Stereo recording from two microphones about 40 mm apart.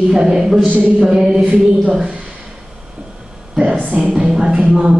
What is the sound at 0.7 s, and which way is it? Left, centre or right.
Speech, right.